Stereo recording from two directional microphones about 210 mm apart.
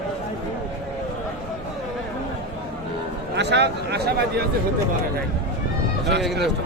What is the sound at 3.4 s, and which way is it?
Speech, 55° right (ahead or behind).